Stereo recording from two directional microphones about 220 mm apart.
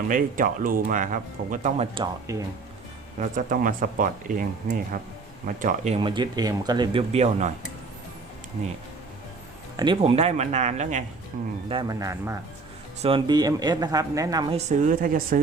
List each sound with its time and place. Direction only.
0.1 s speech: 40° right (ahead or behind)
2.0 s speech: 15° right (ahead or behind)
3.2 s speech: 40° right (ahead or behind)
9.7 s speech: 20° right (ahead or behind); by 11.5 s 40° right (ahead or behind)
11.7 s speech: 20° right (ahead or behind)
14.5 s speech: 35° right (ahead or behind)